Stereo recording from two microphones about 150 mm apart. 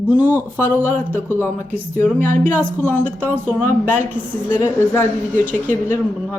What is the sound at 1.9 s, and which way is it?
Speech, 15° left (ahead or behind).